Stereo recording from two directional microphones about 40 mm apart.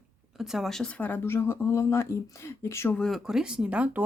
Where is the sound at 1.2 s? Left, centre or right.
Left.